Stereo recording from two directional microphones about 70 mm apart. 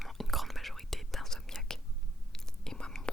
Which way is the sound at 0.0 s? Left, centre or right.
Centre.